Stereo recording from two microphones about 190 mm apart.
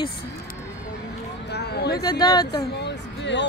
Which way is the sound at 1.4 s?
60° left (ahead or behind).